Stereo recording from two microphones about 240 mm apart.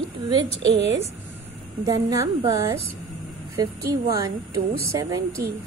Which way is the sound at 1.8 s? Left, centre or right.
Centre.